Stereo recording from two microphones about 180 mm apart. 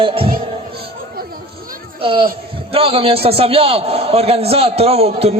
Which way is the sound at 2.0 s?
30° right (ahead or behind).